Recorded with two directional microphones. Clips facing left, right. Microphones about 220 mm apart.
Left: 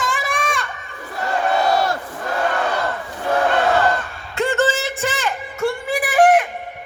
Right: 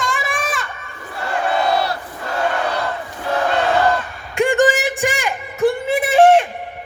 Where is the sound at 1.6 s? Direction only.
45° left (ahead or behind).